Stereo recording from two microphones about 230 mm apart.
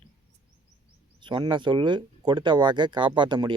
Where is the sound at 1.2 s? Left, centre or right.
Right.